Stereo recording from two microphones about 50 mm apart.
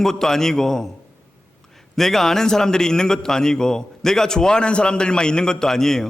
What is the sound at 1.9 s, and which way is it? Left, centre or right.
A man's voice, centre.